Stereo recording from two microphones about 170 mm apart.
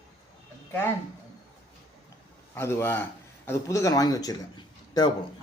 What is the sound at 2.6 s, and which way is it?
Speech, 15° left (ahead or behind).